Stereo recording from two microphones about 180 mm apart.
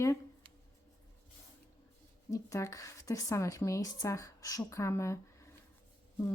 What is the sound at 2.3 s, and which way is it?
Speech, 15° left (ahead or behind).